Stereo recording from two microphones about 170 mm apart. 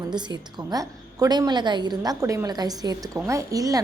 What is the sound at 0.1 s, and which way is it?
A woman's voice, 25° right (ahead or behind).